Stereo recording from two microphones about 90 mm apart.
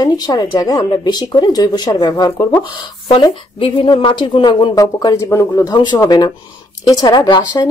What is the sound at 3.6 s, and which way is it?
Speech, 90° left.